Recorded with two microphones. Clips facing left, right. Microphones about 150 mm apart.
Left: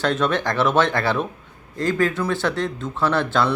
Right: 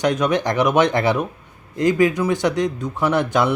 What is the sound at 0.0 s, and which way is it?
Speech, 15° right (ahead or behind).